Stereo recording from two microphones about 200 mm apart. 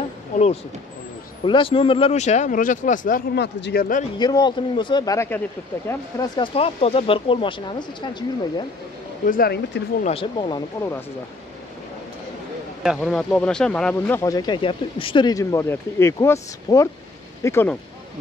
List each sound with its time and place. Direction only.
1.4 s speech: 25° left (ahead or behind); by 4.0 s 45° left (ahead or behind)
4.2 s speech: 20° left (ahead or behind)
9.2 s speech: 45° left (ahead or behind)
10.0 s speech: 25° left (ahead or behind)
12.8 s speech: centre (ahead or behind)